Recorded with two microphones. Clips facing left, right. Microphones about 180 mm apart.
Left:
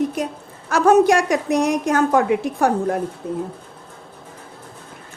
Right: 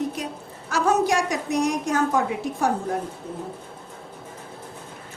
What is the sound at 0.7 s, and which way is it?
A woman's voice, 55° left (ahead or behind).